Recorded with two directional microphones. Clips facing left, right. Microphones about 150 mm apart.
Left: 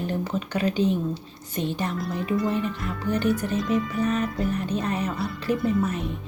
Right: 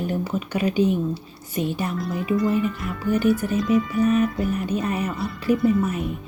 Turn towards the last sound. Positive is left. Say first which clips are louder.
# right 3 dB
turn(degrees=-5)  # may be behind; listen again after turning